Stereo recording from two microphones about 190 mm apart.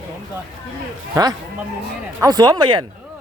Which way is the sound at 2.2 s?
20° right (ahead or behind).